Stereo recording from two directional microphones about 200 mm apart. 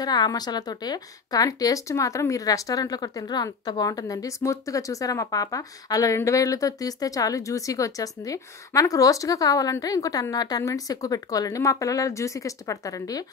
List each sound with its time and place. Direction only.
0.0 s a woman's voice: 20° left (ahead or behind)